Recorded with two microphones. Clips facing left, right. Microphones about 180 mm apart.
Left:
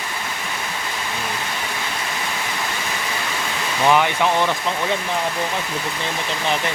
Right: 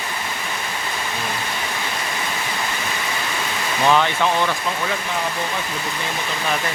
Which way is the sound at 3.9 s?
15° left (ahead or behind).